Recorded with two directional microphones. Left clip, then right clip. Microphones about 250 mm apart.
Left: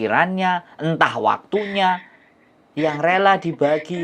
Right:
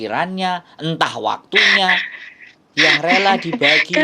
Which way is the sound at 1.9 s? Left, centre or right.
Right.